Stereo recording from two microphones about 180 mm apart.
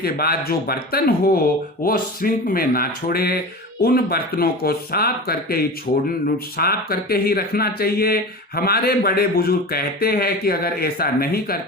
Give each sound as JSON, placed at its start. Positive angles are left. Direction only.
{"t": 0.0, "sound": "speech", "side_deg": 60}